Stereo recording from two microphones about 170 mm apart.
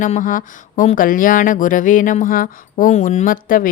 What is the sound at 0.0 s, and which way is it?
Speech, 50° left (ahead or behind).